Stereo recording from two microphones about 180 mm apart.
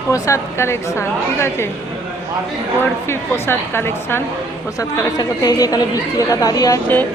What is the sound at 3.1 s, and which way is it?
A woman's voice, 15° left (ahead or behind).